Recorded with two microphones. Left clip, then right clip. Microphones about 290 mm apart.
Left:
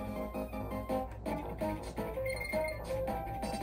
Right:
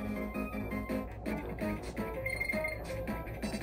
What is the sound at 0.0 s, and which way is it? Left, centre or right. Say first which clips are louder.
Music: right 1 dB; centre.